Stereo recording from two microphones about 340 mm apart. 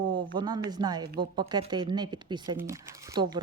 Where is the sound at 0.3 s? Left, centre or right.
Centre.